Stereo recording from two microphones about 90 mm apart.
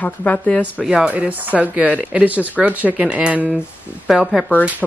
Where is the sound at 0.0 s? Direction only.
15° left (ahead or behind).